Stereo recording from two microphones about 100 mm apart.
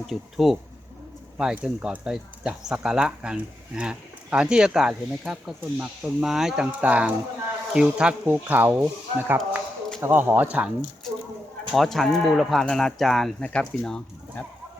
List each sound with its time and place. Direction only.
0.1 s speech: centre (ahead or behind)
11.0 s a sound: 5° left (ahead or behind)
11.7 s speech: centre (ahead or behind)